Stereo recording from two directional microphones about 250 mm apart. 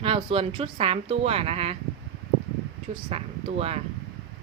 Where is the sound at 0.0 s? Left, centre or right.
Right.